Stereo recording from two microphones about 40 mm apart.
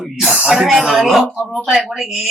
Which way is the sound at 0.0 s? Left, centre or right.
Centre.